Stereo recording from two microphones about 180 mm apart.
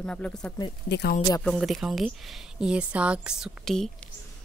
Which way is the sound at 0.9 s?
65° left (ahead or behind).